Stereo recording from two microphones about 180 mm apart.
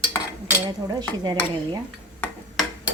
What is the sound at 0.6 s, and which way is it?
Speech, 20° right (ahead or behind).